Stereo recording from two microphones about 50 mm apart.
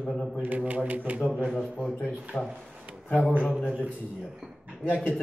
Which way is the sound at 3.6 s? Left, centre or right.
Right.